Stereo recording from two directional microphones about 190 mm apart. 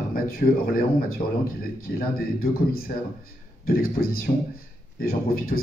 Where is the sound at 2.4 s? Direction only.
50° left (ahead or behind).